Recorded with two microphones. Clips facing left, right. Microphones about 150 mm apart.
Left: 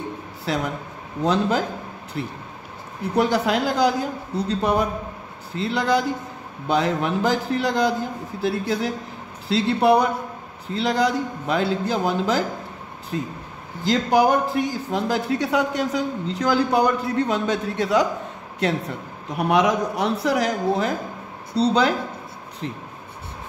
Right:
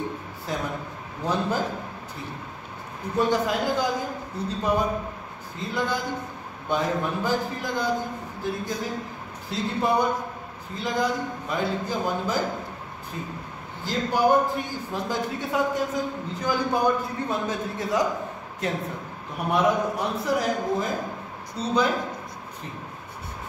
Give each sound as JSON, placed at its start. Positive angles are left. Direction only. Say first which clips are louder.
{"t": 0.5, "sound": "a man's voice", "louder": "left 4 dB", "side_deg": 80}
{"t": 3.2, "sound": "a man's voice", "louder": "left 3 dB", "side_deg": 90}
{"t": 13.8, "sound": "a man's voice", "louder": "left 4 dB", "side_deg": 90}